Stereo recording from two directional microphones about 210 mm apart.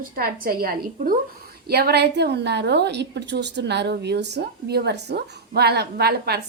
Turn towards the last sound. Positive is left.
turn(degrees=-50)  # may be behind; listen again after turning